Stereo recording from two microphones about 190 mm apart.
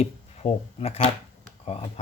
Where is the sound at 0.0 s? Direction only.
35° left (ahead or behind).